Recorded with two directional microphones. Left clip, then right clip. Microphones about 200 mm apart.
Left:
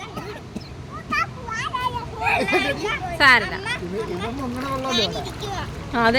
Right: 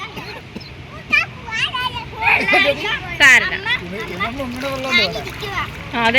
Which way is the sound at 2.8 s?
15° left (ahead or behind).